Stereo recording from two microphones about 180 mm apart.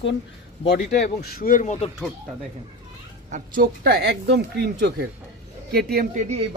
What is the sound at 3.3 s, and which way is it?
A woman's voice, 45° right (ahead or behind).